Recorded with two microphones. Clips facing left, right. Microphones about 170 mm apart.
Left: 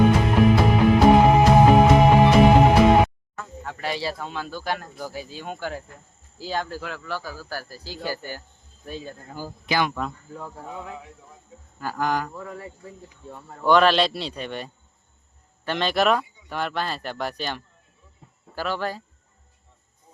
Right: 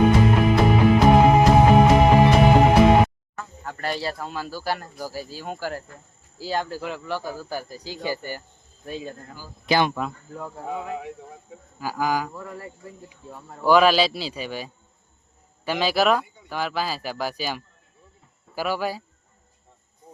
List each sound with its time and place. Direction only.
0.2 s music: centre (ahead or behind)
3.6 s a man's voice: centre (ahead or behind)
9.6 s speech: 30° right (ahead or behind)
9.9 s a man's voice: 5° right (ahead or behind)
10.7 s speech: 70° right (ahead or behind)
11.8 s a man's voice: 5° right (ahead or behind)